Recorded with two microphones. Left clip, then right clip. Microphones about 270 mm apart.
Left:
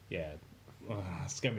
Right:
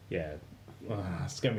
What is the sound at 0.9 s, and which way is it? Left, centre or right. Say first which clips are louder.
Speech: right 3 dB; left.